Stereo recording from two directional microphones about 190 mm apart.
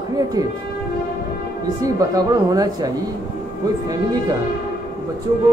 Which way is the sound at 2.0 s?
20° right (ahead or behind).